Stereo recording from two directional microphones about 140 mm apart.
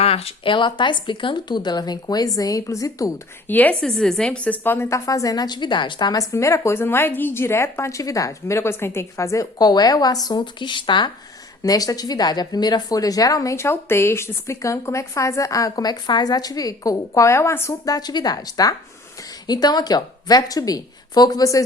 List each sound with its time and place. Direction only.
0.0 s speech: 45° left (ahead or behind); by 3.5 s 25° left (ahead or behind)
3.5 s a woman's voice: 10° left (ahead or behind)